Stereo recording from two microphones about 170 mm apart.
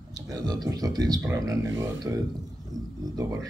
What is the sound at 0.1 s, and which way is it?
Speech, 20° right (ahead or behind).